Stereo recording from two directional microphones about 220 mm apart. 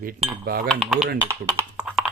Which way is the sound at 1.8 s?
Centre (ahead or behind).